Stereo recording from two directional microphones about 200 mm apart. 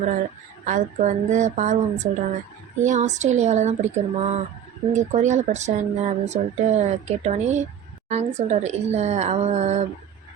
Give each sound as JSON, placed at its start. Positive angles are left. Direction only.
{"t": 0.1, "sound": "speech", "side_deg": -40}